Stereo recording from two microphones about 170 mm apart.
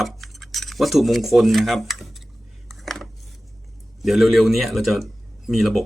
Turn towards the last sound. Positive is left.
turn(degrees=0)  # may be behind; listen again after turning